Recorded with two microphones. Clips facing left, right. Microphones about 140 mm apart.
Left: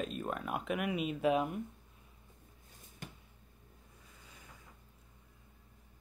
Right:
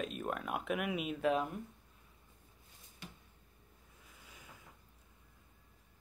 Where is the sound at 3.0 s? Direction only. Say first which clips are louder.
Left 3 dB; 50° left (ahead or behind).